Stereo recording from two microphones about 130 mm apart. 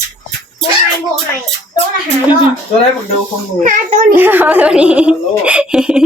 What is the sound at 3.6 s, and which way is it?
Speech, 75° right (ahead or behind).